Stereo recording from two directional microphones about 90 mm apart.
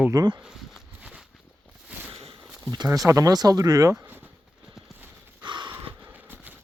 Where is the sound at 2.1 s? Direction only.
90° right.